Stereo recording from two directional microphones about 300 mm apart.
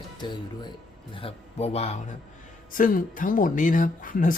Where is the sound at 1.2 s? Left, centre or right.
Centre.